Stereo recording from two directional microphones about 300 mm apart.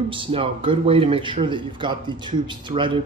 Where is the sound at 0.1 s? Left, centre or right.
Centre.